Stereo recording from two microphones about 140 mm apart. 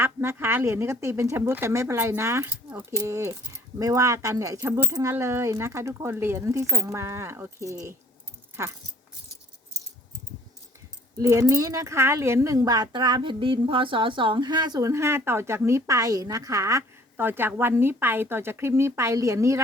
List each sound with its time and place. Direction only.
0.0 s speech: 15° right (ahead or behind)
2.9 s speech: 20° right (ahead or behind)
11.2 s speech: 25° right (ahead or behind)